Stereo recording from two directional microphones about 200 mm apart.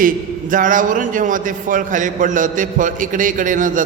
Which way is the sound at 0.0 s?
40° right (ahead or behind).